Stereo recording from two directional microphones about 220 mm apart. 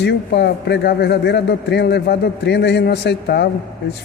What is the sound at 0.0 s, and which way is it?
Speech, 50° left (ahead or behind).